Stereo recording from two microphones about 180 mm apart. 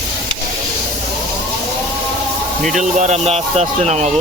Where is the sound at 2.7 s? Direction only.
40° right (ahead or behind).